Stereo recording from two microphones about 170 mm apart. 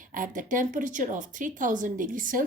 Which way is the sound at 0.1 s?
50° right (ahead or behind).